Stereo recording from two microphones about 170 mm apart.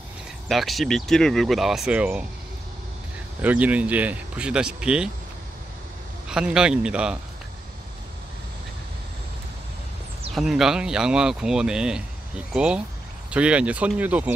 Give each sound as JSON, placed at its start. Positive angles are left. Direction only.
{"t": 0.5, "sound": "speech", "side_deg": 0}
{"t": 3.4, "sound": "speech", "side_deg": -10}
{"t": 6.2, "sound": "speech", "side_deg": -5}
{"t": 10.3, "sound": "speech", "side_deg": 0}